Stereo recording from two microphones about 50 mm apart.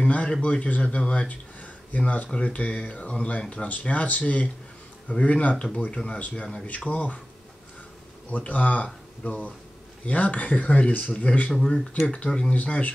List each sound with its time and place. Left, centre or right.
0.0 s a sound: left
0.3 s speech: left
8.3 s speech: left
11.5 s speech: centre; by 12.9 s left